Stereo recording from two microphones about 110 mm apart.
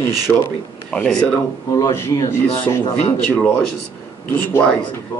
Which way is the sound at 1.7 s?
30° left (ahead or behind).